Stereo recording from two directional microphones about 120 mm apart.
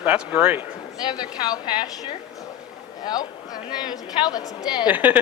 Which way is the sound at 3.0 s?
35° left (ahead or behind).